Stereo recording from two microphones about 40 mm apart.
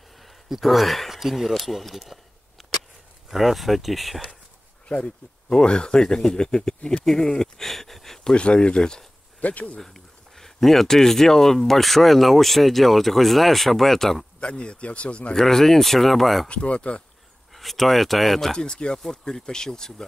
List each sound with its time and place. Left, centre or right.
0.2 s a sound: centre
1.1 s speech: centre
4.8 s speech: left
7.6 s a sound: centre
8.2 s speech: left
9.4 s speech: left
9.8 s speech: centre
14.4 s speech: left
15.3 s speech: centre
16.4 s speech: left
17.5 s speech: centre
18.6 s speech: left